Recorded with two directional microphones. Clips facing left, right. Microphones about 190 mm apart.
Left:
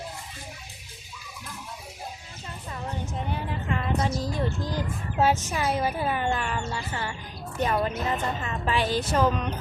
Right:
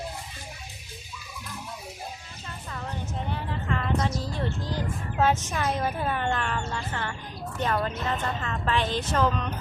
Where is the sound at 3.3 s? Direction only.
15° left (ahead or behind).